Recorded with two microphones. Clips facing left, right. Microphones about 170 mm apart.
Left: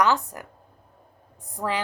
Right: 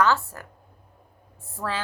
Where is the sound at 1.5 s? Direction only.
15° left (ahead or behind).